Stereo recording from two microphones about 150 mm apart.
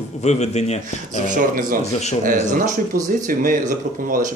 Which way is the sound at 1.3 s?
70° right (ahead or behind).